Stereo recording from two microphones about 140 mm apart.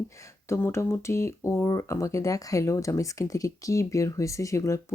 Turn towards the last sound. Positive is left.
turn(degrees=20)  # may be behind; listen again after turning